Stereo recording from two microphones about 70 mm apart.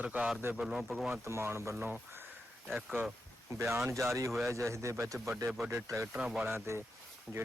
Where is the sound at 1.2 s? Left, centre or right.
Right.